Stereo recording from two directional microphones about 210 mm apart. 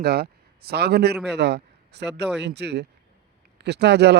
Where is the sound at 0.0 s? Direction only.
50° right (ahead or behind).